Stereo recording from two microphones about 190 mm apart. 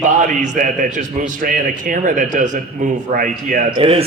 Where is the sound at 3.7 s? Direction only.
30° right (ahead or behind).